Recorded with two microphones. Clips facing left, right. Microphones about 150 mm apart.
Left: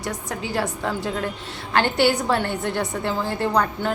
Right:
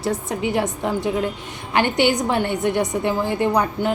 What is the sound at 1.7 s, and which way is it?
A woman's voice, 15° right (ahead or behind).